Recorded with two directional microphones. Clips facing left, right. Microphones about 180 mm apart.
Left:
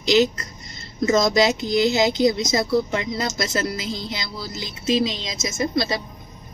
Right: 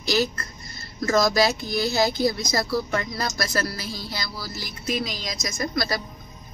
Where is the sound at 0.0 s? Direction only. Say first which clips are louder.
Left 6 dB; 20° left (ahead or behind).